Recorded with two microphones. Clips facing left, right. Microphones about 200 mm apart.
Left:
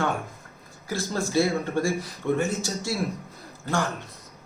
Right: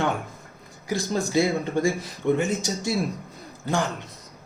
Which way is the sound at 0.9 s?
15° right (ahead or behind).